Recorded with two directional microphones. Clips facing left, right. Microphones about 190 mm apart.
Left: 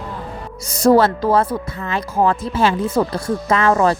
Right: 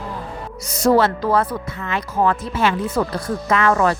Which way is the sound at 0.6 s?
30° left (ahead or behind).